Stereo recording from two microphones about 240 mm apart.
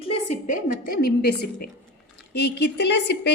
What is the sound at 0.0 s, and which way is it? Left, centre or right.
A woman's voice, left.